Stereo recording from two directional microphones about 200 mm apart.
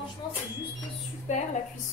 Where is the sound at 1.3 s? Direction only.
35° left (ahead or behind).